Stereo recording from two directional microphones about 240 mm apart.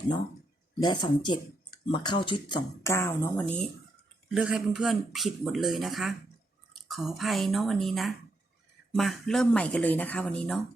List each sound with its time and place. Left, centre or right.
0.8 s speech: centre
4.3 s speech: centre